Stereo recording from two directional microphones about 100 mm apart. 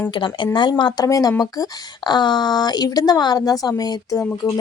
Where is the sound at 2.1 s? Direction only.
45° left (ahead or behind).